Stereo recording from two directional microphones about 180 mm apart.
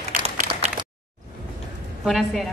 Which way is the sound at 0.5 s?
25° right (ahead or behind).